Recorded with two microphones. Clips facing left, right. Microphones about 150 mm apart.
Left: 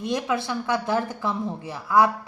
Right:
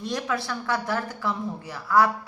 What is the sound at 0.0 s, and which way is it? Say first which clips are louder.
A woman's voice: left 3 dB; 20° left (ahead or behind).